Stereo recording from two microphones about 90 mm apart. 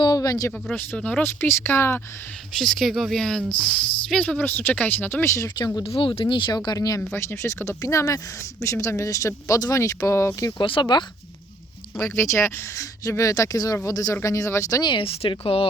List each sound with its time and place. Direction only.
0.0 s a sound: 45° left (ahead or behind)
0.7 s speech: 10° left (ahead or behind)
1.2 s speech: 25° left (ahead or behind)
2.6 s speech: 5° left (ahead or behind)
4.2 s speech: 20° left (ahead or behind)
5.5 s speech: 50° left (ahead or behind)
5.8 s speech: 85° left; by 7.0 s 40° left (ahead or behind)
7.1 s speech: 30° left (ahead or behind)
10.6 s speech: 60° left (ahead or behind)
11.9 s speech: 35° left (ahead or behind)
14.8 s speech: 80° left